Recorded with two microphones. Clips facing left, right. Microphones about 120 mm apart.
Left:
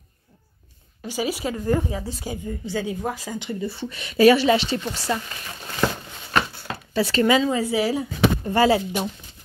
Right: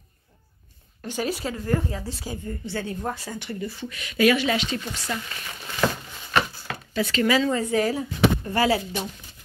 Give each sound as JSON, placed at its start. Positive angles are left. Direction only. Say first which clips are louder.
{"t": 1.0, "sound": "a woman's voice", "louder": "left 2 dB", "side_deg": 5}
{"t": 3.6, "sound": "a woman's voice", "louder": "left 3 dB", "side_deg": 30}
{"t": 6.7, "sound": "a sound", "louder": "left 4 dB", "side_deg": 35}
{"t": 7.3, "sound": "a woman's voice", "louder": "left 1 dB", "side_deg": 10}